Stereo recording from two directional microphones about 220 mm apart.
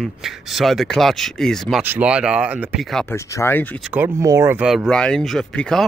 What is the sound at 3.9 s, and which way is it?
Speech, 10° right (ahead or behind).